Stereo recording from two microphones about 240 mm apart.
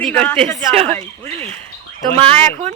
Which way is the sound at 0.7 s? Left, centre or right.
Right.